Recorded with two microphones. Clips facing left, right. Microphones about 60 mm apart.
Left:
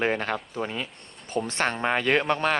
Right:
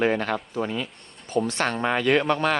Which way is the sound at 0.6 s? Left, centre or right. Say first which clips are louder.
Right 3 dB; left.